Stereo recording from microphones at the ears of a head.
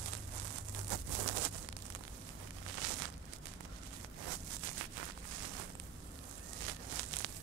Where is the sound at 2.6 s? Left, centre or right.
Right.